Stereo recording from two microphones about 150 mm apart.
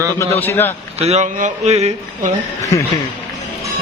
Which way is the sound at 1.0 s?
45° right (ahead or behind).